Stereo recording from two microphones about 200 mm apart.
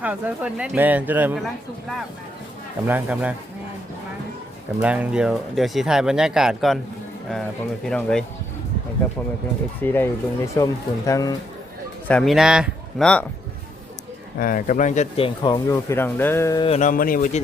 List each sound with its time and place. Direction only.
0.0 s speech: 5° right (ahead or behind)
2.8 s speech: 10° right (ahead or behind)
4.8 s speech: 5° right (ahead or behind)
7.9 s speech: 5° left (ahead or behind)
9.8 s speech: 10° left (ahead or behind)
12.0 s speech: 5° left (ahead or behind)
14.3 s speech: 45° left (ahead or behind); by 16.6 s 15° left (ahead or behind)
16.6 s speech: 30° left (ahead or behind)
16.9 s a man's voice: 45° left (ahead or behind)